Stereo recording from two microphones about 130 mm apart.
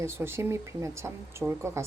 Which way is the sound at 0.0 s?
20° right (ahead or behind).